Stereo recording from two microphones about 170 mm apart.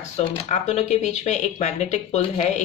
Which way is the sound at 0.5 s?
45° left (ahead or behind).